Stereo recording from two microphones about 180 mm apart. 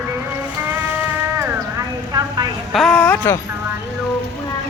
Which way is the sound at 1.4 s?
20° right (ahead or behind).